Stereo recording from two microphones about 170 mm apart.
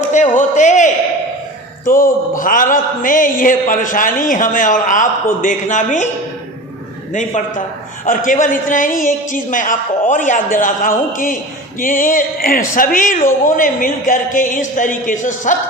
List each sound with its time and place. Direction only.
0.1 s speech: 45° left (ahead or behind)
7.1 s speech: 45° left (ahead or behind)